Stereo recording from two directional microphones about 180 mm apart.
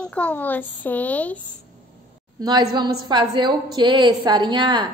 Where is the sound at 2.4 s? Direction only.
25° right (ahead or behind).